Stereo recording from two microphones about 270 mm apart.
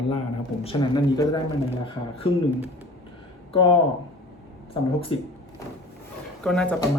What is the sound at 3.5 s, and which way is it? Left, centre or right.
Speech, centre.